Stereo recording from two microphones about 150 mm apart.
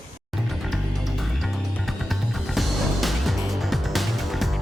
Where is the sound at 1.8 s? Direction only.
Centre (ahead or behind).